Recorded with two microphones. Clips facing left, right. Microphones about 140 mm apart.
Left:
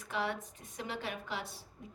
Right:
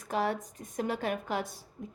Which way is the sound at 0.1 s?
40° right (ahead or behind).